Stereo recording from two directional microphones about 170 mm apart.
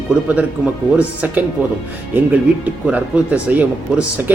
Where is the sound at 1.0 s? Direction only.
10° right (ahead or behind).